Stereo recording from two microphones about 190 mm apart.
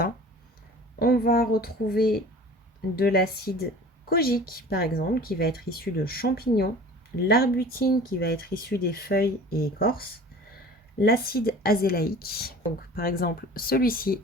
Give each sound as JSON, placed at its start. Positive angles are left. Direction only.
{"t": 0.9, "sound": "speech", "side_deg": 55}